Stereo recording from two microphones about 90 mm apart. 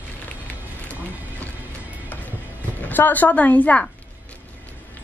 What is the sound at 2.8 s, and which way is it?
Speech, 20° left (ahead or behind).